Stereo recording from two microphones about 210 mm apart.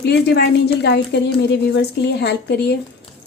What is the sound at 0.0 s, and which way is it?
A woman's voice, 55° left (ahead or behind).